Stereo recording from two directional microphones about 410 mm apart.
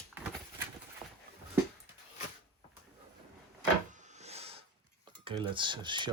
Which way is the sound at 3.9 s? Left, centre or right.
Centre.